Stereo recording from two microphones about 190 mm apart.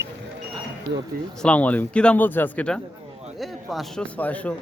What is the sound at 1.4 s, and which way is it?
Speech, 5° left (ahead or behind).